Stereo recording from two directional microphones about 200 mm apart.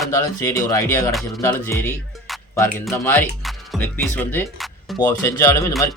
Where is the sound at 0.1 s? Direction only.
15° left (ahead or behind).